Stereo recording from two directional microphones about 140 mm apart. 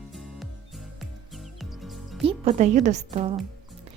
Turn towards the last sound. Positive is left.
turn(degrees=-45)  # may be behind; listen again after turning